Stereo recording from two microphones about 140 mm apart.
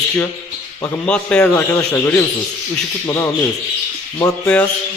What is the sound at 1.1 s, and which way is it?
A man's voice, 5° left (ahead or behind).